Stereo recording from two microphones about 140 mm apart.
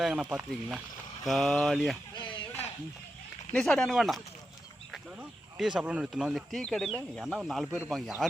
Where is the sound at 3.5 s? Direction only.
5° left (ahead or behind).